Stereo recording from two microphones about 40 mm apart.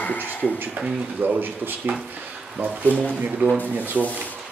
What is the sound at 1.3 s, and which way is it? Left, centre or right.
Speech, right.